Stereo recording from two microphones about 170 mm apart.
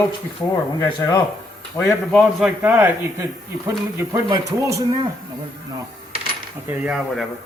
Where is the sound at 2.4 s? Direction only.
10° right (ahead or behind).